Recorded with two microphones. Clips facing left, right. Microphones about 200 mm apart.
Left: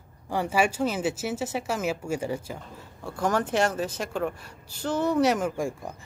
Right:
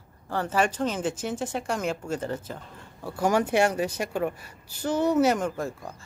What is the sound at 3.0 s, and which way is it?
Speech, 10° right (ahead or behind).